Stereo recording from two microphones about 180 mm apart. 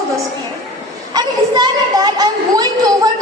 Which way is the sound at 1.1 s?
20° right (ahead or behind).